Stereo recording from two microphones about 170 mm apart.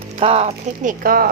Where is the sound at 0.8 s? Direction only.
60° right (ahead or behind).